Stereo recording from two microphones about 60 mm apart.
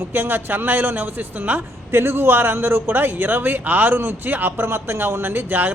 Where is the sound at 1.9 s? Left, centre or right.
Right.